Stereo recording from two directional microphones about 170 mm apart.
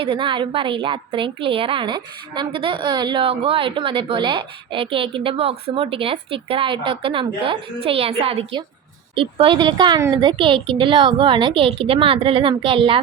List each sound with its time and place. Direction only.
0.0 s a woman's voice: 30° right (ahead or behind)